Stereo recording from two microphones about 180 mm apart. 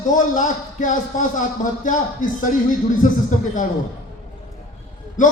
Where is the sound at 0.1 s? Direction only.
45° left (ahead or behind).